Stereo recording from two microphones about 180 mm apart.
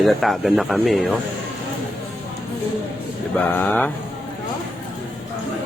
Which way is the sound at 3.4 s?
10° left (ahead or behind).